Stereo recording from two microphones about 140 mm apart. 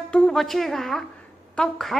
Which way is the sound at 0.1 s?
5° left (ahead or behind).